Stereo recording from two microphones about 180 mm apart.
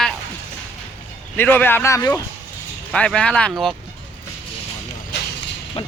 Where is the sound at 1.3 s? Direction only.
10° left (ahead or behind).